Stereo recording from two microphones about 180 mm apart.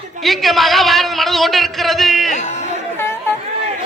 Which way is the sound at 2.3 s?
40° left (ahead or behind).